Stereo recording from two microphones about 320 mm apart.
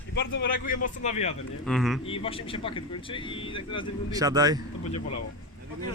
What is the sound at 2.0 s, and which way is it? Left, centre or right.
Speech, centre.